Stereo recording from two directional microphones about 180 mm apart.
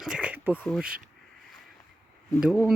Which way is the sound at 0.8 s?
50° right (ahead or behind).